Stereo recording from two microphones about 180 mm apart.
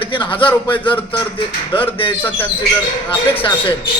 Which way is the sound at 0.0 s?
30° left (ahead or behind).